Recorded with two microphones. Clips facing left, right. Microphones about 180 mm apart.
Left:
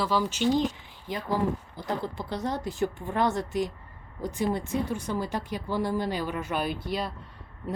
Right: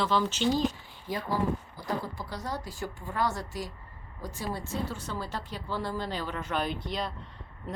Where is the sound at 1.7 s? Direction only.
25° left (ahead or behind); by 7.1 s 5° left (ahead or behind).